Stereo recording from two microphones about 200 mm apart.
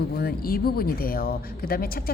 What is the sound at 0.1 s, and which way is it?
Speech, 50° left (ahead or behind).